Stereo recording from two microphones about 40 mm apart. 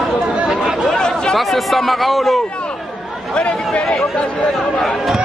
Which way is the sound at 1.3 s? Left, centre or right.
Centre.